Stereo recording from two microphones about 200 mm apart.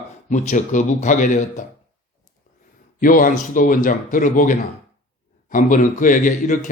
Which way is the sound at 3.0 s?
45° left (ahead or behind).